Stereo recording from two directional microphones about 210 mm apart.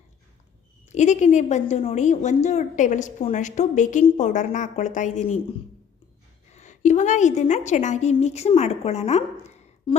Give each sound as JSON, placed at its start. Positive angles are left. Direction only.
{"t": 0.9, "sound": "a woman's voice", "side_deg": 35}
{"t": 6.5, "sound": "a woman's voice", "side_deg": 35}